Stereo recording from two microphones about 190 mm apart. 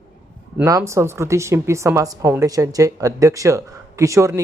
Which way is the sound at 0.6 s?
15° right (ahead or behind).